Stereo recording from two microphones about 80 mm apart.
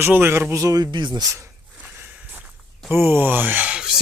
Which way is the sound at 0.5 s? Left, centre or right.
Right.